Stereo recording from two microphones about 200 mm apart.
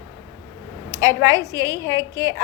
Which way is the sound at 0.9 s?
15° right (ahead or behind).